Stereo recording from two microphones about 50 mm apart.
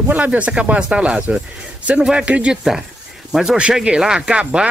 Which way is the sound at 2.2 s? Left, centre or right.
Right.